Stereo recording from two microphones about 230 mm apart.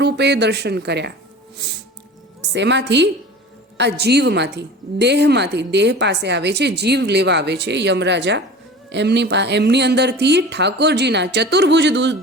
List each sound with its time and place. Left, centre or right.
0.0 s a woman's voice: right
2.5 s a woman's voice: right